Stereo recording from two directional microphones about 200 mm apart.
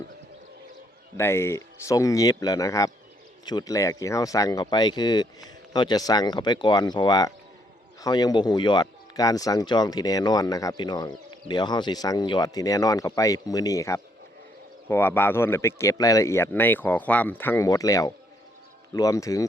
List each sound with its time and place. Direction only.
1.1 s speech: 15° left (ahead or behind)